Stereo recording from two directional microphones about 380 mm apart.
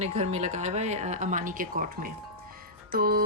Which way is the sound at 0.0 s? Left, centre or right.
Centre.